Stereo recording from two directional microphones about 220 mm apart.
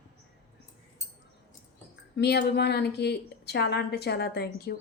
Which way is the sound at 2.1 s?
50° left (ahead or behind).